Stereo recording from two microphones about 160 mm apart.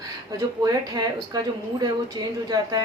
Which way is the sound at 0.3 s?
25° right (ahead or behind).